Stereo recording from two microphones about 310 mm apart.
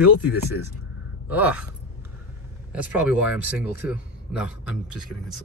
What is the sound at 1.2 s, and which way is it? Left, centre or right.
Speech, centre.